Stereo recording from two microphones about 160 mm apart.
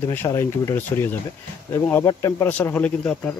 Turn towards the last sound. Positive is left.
turn(degrees=10)  # may be behind; listen again after turning